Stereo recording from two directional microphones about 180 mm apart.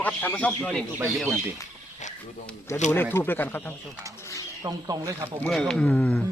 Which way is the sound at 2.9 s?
10° left (ahead or behind).